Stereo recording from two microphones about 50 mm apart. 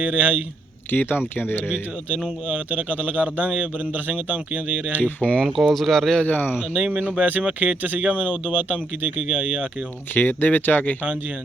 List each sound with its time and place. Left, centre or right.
0.0 s a man's voice: right
0.9 s speech: left
2.1 s a man's voice: centre; by 5.0 s right
5.2 s speech: left
5.7 s speech: centre
6.2 s speech: left
7.2 s a man's voice: right
10.2 s speech: left